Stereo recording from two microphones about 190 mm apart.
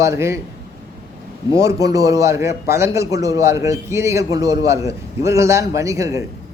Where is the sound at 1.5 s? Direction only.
15° right (ahead or behind).